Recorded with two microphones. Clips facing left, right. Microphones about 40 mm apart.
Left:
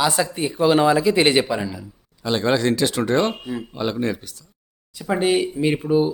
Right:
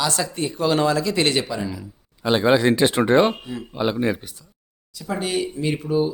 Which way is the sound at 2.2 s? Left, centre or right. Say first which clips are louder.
Right 2 dB; centre.